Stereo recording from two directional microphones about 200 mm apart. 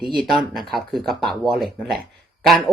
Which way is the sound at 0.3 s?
Centre (ahead or behind).